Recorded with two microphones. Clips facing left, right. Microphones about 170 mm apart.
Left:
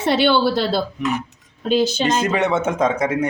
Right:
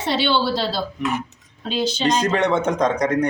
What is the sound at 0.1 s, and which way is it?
A woman's voice, 55° left (ahead or behind).